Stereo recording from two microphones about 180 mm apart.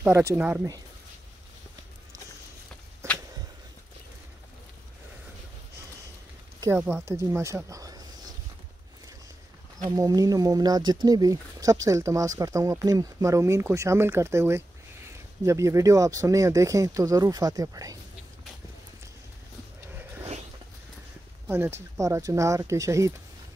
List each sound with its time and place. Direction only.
0.0 s speech: 15° right (ahead or behind)
3.0 s a sound: 15° right (ahead or behind)
6.6 s speech: 10° right (ahead or behind)
9.8 s speech: 20° right (ahead or behind)
21.5 s speech: 15° right (ahead or behind)